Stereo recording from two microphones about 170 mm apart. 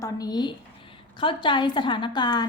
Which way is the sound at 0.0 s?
25° left (ahead or behind).